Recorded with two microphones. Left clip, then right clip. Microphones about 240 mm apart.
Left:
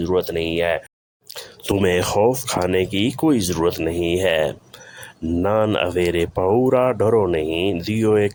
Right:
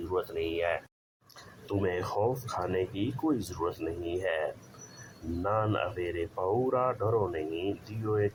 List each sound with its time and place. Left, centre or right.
0.1 s speech: left